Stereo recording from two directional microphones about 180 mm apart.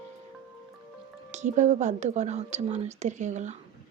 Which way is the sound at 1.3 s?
40° right (ahead or behind).